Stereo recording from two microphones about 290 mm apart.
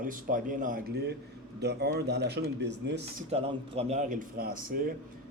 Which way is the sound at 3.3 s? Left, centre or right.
Right.